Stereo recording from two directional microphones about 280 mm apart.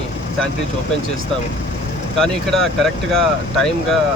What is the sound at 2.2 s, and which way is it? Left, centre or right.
Speech, centre.